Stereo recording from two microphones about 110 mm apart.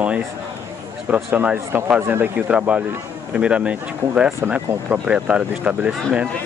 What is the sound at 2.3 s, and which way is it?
Speech, 10° right (ahead or behind).